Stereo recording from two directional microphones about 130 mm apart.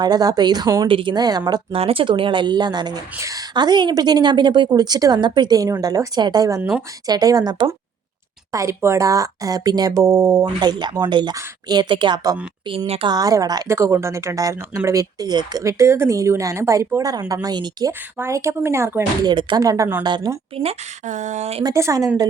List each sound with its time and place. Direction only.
0.0 s a woman's voice: 30° right (ahead or behind)
0.9 s a woman's voice: 40° right (ahead or behind)
1.7 s a woman's voice: 45° right (ahead or behind); by 6.6 s 30° right (ahead or behind)
6.6 s speech: 10° right (ahead or behind)
7.1 s a woman's voice: 30° right (ahead or behind)
12.6 s a woman's voice: 40° right (ahead or behind)
18.2 s speech: 25° right (ahead or behind)
19.2 s a woman's voice: 35° right (ahead or behind)
20.5 s speech: 45° right (ahead or behind)
21.1 s speech: 70° right (ahead or behind)
21.6 s speech: 25° right (ahead or behind)